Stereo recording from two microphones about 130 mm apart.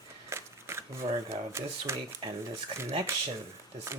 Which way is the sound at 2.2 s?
40° right (ahead or behind).